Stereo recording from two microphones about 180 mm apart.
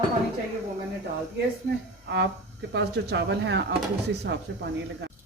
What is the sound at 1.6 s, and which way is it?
Speech, 70° right (ahead or behind).